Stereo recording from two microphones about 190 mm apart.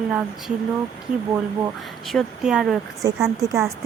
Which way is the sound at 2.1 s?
Centre (ahead or behind).